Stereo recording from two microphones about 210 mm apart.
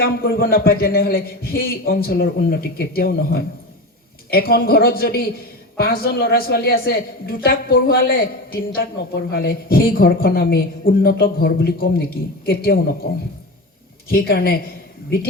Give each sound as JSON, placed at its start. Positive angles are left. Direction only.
{"t": 0.0, "sound": "speech", "side_deg": 45}
{"t": 14.1, "sound": "speech", "side_deg": 45}